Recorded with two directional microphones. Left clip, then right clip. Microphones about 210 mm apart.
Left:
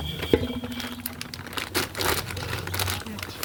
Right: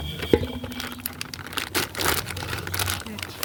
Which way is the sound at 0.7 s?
35° right (ahead or behind).